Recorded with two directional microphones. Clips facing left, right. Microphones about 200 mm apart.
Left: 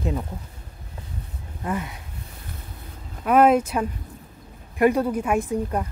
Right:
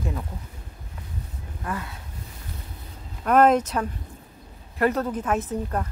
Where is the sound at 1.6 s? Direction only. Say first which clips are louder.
Left 4 dB; 20° left (ahead or behind).